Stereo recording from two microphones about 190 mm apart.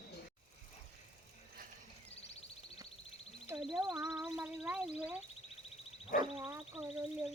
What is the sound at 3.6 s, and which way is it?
Speech, centre (ahead or behind).